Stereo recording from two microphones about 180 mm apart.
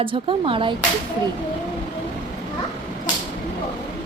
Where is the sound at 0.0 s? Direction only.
30° right (ahead or behind).